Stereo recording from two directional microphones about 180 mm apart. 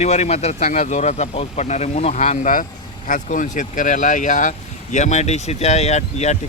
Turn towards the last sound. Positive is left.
turn(degrees=40)  # may be behind; listen again after turning